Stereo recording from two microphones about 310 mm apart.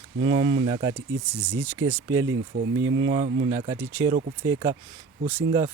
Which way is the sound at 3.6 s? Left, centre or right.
Centre.